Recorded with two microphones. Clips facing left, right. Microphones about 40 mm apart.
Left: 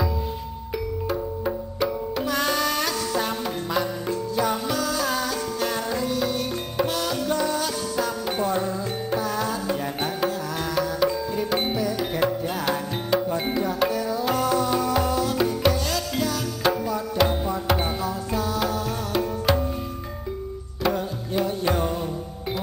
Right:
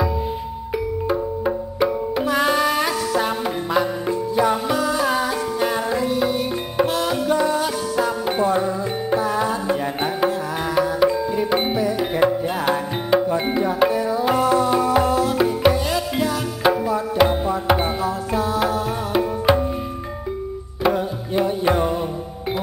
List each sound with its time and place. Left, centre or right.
1.0 s music: centre
20.8 s music: centre